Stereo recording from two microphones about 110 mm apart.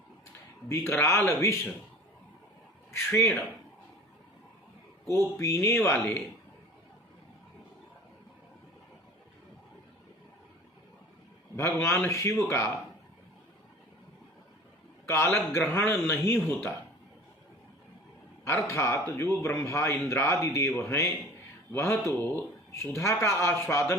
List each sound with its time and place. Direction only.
0.7 s speech: 25° left (ahead or behind)
2.9 s speech: 20° left (ahead or behind)
5.4 s speech: 25° left (ahead or behind)
11.5 s speech: 25° left (ahead or behind)
15.0 s speech: 25° left (ahead or behind)
18.4 s speech: 25° left (ahead or behind)